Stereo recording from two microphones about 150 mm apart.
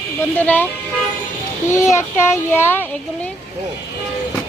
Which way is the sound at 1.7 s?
20° left (ahead or behind).